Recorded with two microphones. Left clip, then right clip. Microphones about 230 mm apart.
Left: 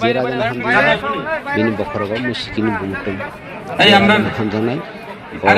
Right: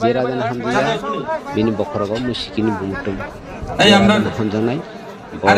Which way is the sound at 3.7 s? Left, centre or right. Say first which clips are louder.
Left 2 dB; right.